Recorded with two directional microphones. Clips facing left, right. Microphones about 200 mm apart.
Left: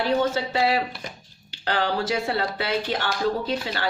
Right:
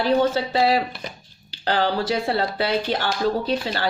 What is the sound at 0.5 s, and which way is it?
Speech, 35° right (ahead or behind).